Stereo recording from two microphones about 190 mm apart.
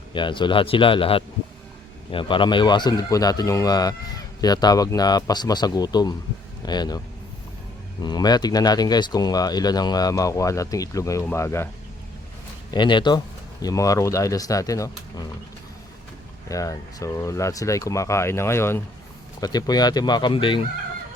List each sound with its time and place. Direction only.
0.1 s speech: 25° left (ahead or behind)
8.0 s speech: 20° left (ahead or behind)
12.7 s speech: 25° left (ahead or behind)
16.5 s speech: 15° left (ahead or behind)